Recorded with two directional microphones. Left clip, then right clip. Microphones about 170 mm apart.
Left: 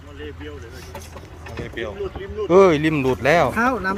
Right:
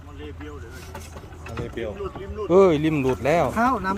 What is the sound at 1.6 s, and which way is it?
Speech, 70° right (ahead or behind).